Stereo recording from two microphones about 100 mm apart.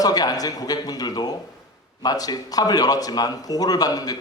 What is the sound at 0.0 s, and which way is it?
A man's voice, 40° left (ahead or behind).